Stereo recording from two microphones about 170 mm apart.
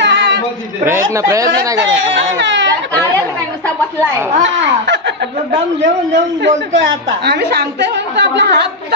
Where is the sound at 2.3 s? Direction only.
90° right.